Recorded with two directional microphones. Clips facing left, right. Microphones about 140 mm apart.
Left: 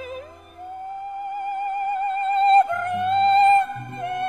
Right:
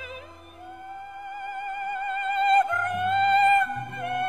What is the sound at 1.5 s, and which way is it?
Music, 35° left (ahead or behind).